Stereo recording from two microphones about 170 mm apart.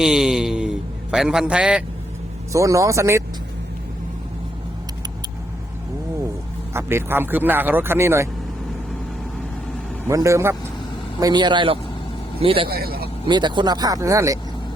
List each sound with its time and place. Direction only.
0.0 s a sound: 5° right (ahead or behind)
2.5 s speech: 20° right (ahead or behind)
6.7 s speech: 15° right (ahead or behind)
10.1 s a man's voice: 15° right (ahead or behind); by 12.6 s 30° right (ahead or behind)
12.6 s speech: 65° right (ahead or behind)
13.2 s speech: 25° right (ahead or behind)